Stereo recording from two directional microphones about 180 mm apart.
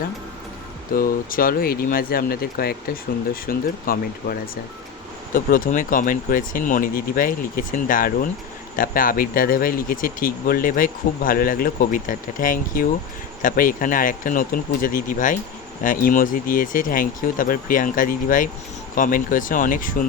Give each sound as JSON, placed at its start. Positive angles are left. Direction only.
{"t": 0.9, "sound": "speech", "side_deg": 50}